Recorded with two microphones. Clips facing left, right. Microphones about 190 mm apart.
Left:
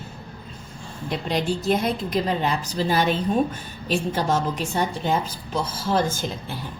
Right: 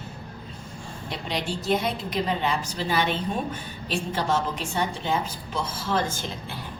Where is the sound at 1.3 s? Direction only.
45° left (ahead or behind).